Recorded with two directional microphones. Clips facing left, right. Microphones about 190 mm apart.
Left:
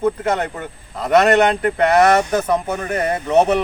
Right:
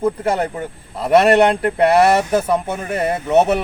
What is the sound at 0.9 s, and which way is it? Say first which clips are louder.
A man's voice: right 2 dB; 10° right (ahead or behind).